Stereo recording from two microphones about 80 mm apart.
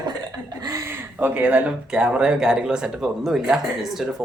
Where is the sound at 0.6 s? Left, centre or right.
Right.